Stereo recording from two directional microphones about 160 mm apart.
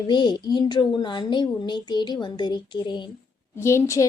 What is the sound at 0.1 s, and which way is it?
Speech, 25° left (ahead or behind).